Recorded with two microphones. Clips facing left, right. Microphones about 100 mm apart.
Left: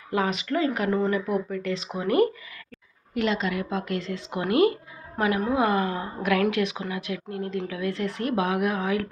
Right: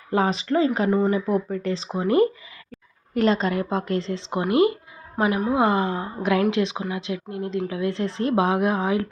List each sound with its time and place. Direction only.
0.1 s a woman's voice: 30° right (ahead or behind)
0.9 s speech: 15° right (ahead or behind)
1.1 s a woman's voice: 35° right (ahead or behind)
3.2 s a woman's voice: 40° right (ahead or behind)